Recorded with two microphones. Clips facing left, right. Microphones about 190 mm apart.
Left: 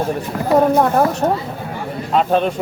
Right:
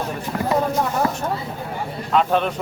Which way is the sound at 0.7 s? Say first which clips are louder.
Left 8 dB; 60° left (ahead or behind).